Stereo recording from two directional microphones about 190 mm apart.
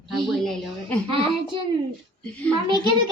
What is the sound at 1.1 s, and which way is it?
Speech, 25° right (ahead or behind).